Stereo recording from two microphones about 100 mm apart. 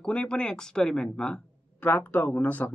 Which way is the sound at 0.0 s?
10° left (ahead or behind).